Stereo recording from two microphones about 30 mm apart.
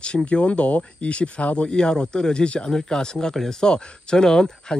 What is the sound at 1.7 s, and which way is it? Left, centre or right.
Speech, left.